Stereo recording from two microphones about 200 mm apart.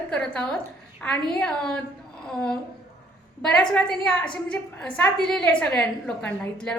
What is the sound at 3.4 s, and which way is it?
A woman's voice, 5° left (ahead or behind).